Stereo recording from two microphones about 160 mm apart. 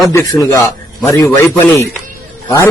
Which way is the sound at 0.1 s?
20° left (ahead or behind).